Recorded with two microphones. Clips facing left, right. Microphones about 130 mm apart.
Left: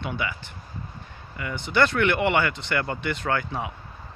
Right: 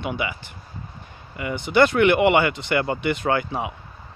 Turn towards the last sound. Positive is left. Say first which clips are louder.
# right 4 dB
turn(degrees=-15)  # may be behind; listen again after turning